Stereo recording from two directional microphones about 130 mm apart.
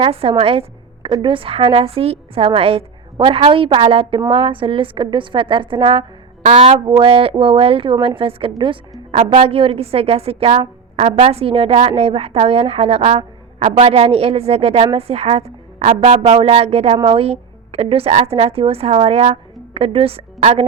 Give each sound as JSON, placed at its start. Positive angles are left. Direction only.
{"t": 0.0, "sound": "a woman's voice", "side_deg": -50}
{"t": 6.4, "sound": "a woman's voice", "side_deg": -55}